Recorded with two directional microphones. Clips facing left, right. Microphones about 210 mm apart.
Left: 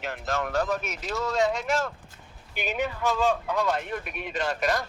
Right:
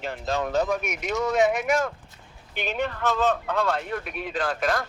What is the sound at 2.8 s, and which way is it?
Speech, 10° left (ahead or behind).